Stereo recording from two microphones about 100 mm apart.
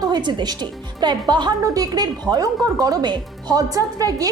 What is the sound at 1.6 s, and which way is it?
A woman's voice, 35° right (ahead or behind).